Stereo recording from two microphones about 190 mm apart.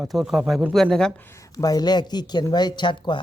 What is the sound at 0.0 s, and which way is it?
Speech, centre (ahead or behind).